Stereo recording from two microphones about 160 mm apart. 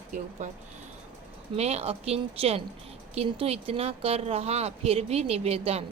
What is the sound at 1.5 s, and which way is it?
Speech, 40° right (ahead or behind).